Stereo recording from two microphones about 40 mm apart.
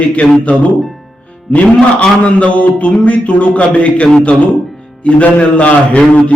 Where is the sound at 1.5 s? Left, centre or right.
Left.